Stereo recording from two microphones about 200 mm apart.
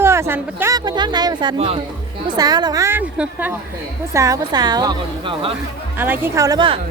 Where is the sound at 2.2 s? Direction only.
20° right (ahead or behind).